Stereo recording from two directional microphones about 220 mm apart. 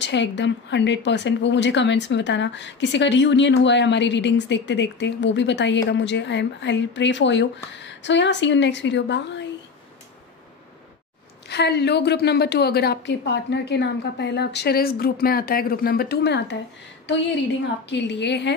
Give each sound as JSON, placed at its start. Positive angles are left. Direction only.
{"t": 0.0, "sound": "a woman's voice", "side_deg": 55}
{"t": 11.4, "sound": "a woman's voice", "side_deg": 50}